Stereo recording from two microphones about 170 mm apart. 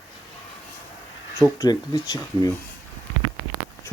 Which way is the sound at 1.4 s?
20° left (ahead or behind).